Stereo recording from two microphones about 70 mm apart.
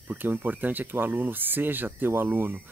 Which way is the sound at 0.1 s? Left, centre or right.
Right.